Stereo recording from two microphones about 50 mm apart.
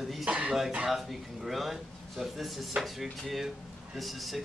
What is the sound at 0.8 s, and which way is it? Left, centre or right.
Speech, centre.